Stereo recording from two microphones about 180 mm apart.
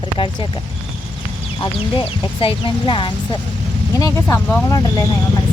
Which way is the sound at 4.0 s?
15° left (ahead or behind).